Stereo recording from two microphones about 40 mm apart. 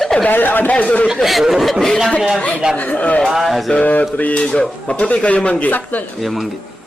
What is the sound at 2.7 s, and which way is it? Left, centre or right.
Speech, left.